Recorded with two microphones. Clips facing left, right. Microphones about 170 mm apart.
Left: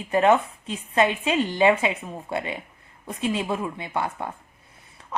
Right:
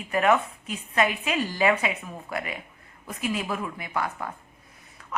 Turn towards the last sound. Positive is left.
turn(degrees=25)  # may be behind; listen again after turning